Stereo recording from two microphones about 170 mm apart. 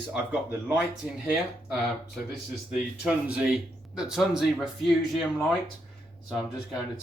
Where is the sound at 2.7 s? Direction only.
5° right (ahead or behind).